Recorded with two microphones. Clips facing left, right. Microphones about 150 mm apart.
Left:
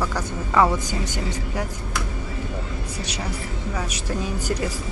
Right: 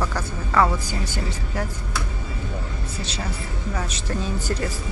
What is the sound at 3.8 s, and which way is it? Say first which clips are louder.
Speech: left 1 dB; 10° left (ahead or behind).